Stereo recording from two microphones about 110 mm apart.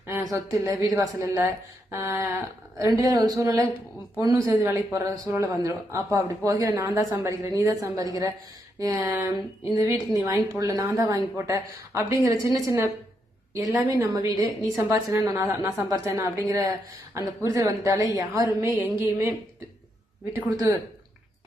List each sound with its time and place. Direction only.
0.1 s a woman's voice: 30° right (ahead or behind)
4.6 s a woman's voice: 25° right (ahead or behind)
18.8 s a woman's voice: 20° right (ahead or behind)